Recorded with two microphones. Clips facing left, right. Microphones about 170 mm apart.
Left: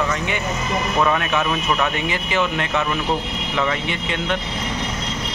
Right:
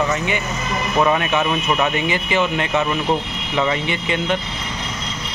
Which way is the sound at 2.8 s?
15° right (ahead or behind).